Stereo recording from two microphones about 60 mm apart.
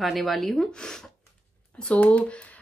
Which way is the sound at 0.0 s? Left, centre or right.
Centre.